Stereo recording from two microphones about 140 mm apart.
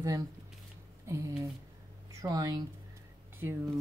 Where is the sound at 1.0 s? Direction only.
20° right (ahead or behind).